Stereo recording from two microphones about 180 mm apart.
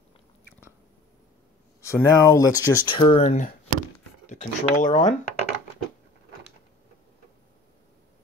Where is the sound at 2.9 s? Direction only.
30° left (ahead or behind).